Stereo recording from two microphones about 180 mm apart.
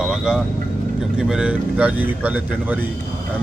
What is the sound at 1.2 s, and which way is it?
Speech, 5° right (ahead or behind).